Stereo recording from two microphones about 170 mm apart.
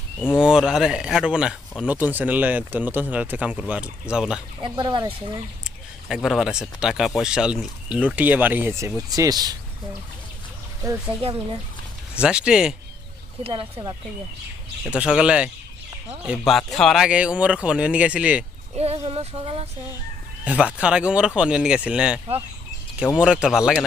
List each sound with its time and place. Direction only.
0.4 s speech: 5° right (ahead or behind)
4.6 s speech: 25° right (ahead or behind)
5.6 s speech: 5° right (ahead or behind); by 9.6 s 25° right (ahead or behind)
10.8 s speech: 10° right (ahead or behind)
13.4 s speech: 30° right (ahead or behind)
14.8 s speech: 5° right (ahead or behind)
18.8 s speech: 35° right (ahead or behind)
20.4 s speech: 10° right (ahead or behind)
23.2 s speech: 5° right (ahead or behind)